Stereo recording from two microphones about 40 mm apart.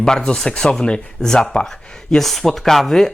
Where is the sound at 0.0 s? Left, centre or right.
Centre.